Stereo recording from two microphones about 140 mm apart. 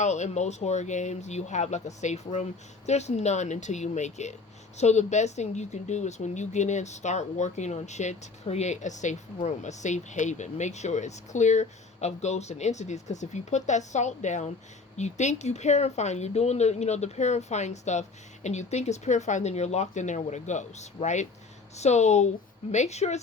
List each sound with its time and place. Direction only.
0.0 s a woman's voice: 55° left (ahead or behind)